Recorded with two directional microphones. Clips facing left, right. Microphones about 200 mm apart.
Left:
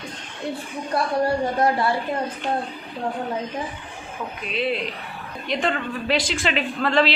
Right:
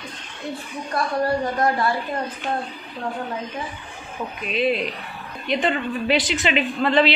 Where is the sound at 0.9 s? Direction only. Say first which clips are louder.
Left 1 dB; 30° left (ahead or behind).